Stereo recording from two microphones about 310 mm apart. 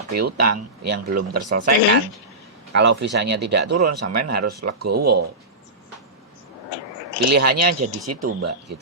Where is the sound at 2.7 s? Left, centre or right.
Right.